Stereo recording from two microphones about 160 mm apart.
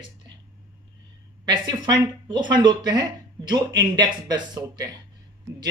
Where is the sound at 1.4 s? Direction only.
30° right (ahead or behind).